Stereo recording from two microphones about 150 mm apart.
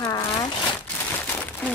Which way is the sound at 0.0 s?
25° left (ahead or behind).